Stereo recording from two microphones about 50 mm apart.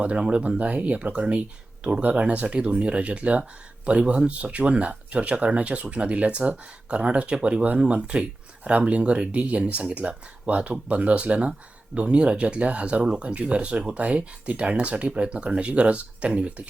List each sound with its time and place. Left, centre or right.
0.0 s speech: right